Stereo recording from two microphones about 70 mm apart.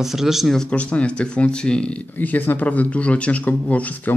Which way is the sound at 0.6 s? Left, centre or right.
Centre.